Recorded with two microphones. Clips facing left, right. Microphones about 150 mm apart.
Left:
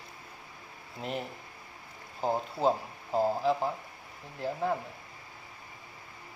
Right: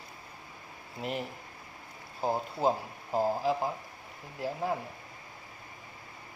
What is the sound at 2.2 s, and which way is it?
Speech, 10° right (ahead or behind).